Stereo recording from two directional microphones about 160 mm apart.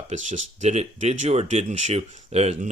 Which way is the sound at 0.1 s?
50° right (ahead or behind).